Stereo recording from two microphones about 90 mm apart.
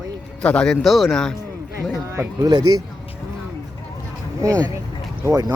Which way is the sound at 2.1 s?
30° right (ahead or behind).